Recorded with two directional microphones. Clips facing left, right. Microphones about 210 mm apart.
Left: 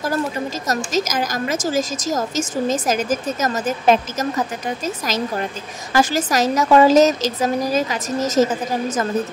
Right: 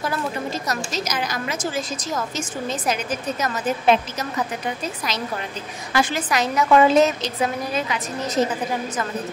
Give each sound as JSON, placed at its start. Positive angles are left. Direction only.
{"t": 0.9, "sound": "a woman's voice", "side_deg": 45}